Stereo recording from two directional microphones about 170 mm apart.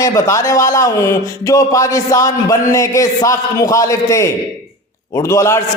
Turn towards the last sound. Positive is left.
turn(degrees=15)  # may be behind; listen again after turning